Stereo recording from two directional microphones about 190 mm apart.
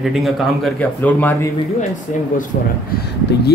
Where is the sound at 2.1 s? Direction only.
40° left (ahead or behind).